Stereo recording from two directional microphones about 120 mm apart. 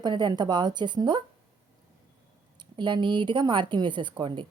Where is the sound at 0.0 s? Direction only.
40° right (ahead or behind).